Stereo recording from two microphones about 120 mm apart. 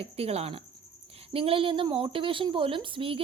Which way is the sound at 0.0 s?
55° right (ahead or behind).